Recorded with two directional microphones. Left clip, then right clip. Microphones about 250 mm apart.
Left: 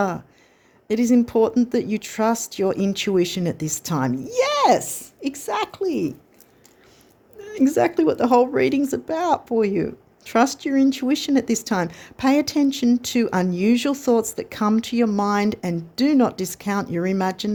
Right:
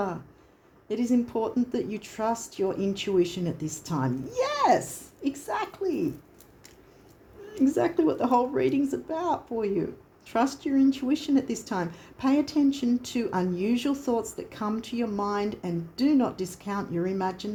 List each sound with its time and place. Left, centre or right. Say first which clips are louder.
0.9 s speech: left 8 dB; left
7.4 s speech: left 6 dB; left